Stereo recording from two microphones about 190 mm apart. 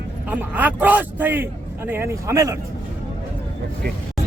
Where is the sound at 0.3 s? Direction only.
10° right (ahead or behind).